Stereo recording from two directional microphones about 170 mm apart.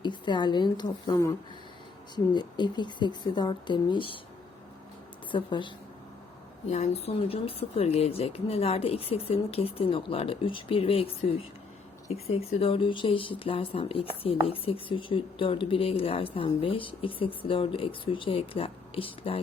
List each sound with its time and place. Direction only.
0.0 s a woman's voice: 25° left (ahead or behind)
5.3 s speech: 30° left (ahead or behind)
6.7 s speech: 40° left (ahead or behind)